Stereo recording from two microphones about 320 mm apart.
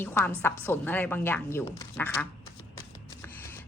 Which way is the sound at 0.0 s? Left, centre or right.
Centre.